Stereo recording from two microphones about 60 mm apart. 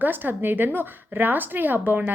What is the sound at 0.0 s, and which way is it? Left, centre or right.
A woman's voice, right.